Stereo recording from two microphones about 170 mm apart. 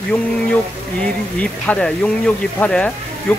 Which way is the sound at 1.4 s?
5° left (ahead or behind).